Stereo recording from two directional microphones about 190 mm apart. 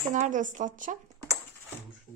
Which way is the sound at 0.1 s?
40° right (ahead or behind).